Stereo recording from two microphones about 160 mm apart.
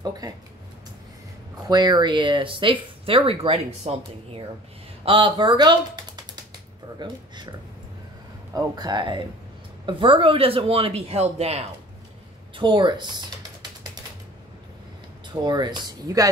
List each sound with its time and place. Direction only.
0.0 s speech: 25° right (ahead or behind)
1.7 s speech: 25° right (ahead or behind)
8.5 s speech: 25° right (ahead or behind); by 11.6 s 40° right (ahead or behind)
12.5 s speech: 30° right (ahead or behind)
15.2 s speech: 25° right (ahead or behind)